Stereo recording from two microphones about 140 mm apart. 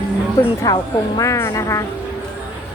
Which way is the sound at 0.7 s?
25° left (ahead or behind).